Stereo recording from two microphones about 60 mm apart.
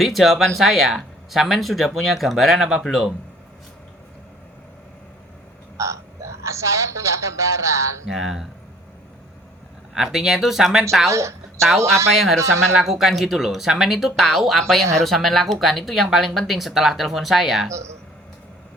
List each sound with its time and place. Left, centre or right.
0.0 s speech: centre
5.7 s speech: right
8.1 s speech: centre
9.9 s speech: centre
11.1 s a woman's voice: right
12.1 s speech: centre